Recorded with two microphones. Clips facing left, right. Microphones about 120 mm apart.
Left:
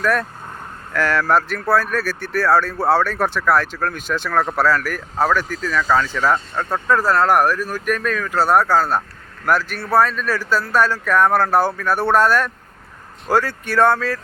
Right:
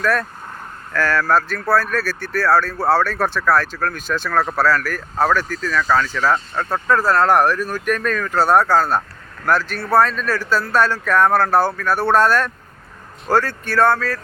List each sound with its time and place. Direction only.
0.0 s speech: 15° left (ahead or behind)
4.3 s speech: centre (ahead or behind)
4.7 s speech: 15° left (ahead or behind)